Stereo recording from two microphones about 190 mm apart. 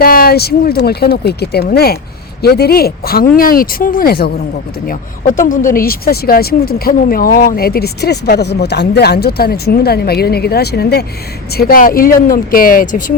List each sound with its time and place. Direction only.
0.0 s speech: 50° left (ahead or behind)